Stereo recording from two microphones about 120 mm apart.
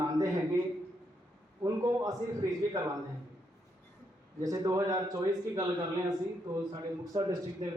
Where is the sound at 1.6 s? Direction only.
30° right (ahead or behind).